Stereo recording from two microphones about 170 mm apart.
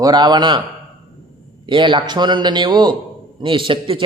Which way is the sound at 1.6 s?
30° right (ahead or behind).